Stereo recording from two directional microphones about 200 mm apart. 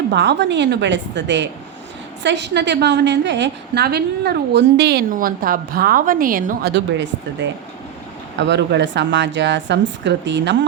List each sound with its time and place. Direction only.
0.1 s a woman's voice: 60° right (ahead or behind)